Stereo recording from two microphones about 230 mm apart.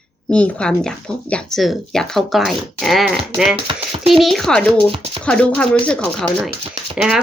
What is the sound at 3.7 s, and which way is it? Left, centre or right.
Speech, right.